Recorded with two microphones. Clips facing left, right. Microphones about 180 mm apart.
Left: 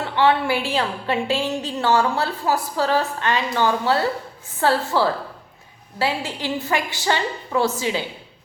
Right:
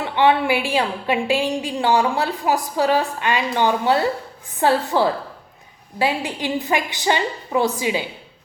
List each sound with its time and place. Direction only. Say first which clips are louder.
0.0 s a woman's voice: right 2 dB; 15° right (ahead or behind)